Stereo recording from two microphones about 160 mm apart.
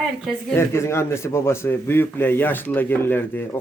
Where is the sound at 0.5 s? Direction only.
15° left (ahead or behind).